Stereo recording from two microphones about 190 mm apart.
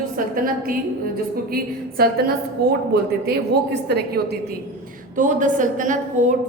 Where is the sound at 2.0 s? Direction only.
55° right (ahead or behind).